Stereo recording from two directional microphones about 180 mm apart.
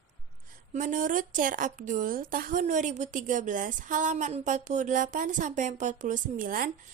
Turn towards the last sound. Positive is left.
turn(degrees=-50)  # may be behind; listen again after turning